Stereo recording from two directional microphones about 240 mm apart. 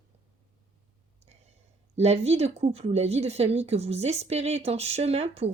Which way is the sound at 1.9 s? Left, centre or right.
Right.